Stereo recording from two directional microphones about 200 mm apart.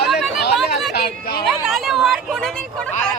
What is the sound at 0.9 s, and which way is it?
Speech, 50° left (ahead or behind).